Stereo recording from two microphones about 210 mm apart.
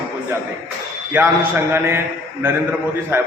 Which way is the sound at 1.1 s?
10° right (ahead or behind).